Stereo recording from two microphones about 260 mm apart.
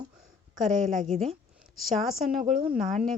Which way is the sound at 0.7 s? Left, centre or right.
Right.